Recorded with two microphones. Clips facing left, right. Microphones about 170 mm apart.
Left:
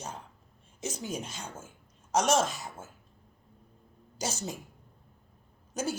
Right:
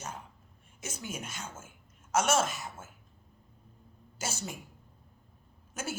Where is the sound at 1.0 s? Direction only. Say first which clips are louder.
Left 3 dB; 35° left (ahead or behind).